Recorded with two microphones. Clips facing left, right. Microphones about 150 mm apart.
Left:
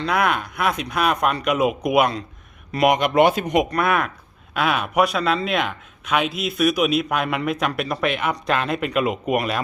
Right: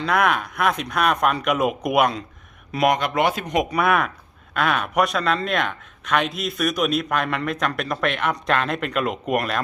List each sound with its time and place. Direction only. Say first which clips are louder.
0.0 s a man's voice: right 1 dB; centre (ahead or behind)
3.0 s speech: left 5 dB; 25° left (ahead or behind)
3.4 s a man's voice: left 1 dB; 5° left (ahead or behind)